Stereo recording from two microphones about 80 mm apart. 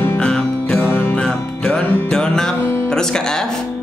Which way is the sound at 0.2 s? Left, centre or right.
Centre.